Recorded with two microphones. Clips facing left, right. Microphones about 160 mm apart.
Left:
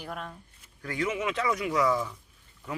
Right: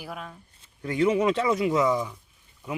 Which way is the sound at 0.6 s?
20° right (ahead or behind).